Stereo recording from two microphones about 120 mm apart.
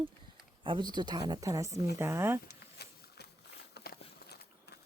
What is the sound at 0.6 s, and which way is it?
Speech, 40° right (ahead or behind).